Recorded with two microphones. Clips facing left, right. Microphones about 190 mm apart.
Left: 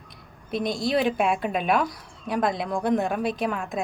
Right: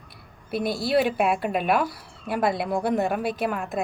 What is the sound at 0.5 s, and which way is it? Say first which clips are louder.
Speech: right 1 dB; 5° right (ahead or behind).